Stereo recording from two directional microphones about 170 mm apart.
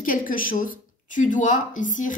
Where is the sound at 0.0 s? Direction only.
55° left (ahead or behind).